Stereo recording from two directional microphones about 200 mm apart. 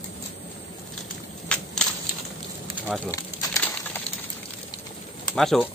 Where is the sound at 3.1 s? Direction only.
15° left (ahead or behind).